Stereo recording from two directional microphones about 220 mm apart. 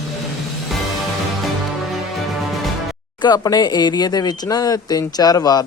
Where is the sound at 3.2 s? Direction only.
20° left (ahead or behind).